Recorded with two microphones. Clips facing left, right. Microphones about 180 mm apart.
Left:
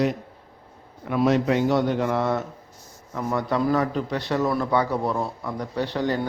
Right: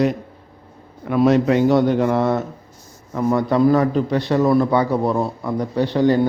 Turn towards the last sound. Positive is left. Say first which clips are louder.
# right 8 dB
turn(degrees=-25)  # may be behind; listen again after turning